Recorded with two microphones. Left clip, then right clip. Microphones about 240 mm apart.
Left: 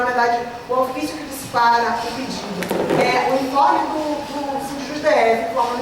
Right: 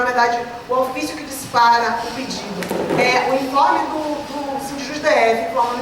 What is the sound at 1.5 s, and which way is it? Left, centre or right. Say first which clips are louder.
A woman's voice: right 2 dB; centre.